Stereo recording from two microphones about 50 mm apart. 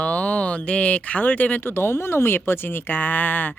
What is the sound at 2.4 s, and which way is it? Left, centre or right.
Speech, left.